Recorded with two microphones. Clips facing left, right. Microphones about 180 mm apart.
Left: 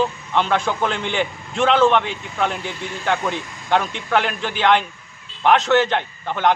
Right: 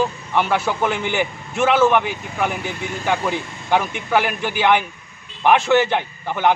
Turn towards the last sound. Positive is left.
turn(degrees=-10)  # may be behind; listen again after turning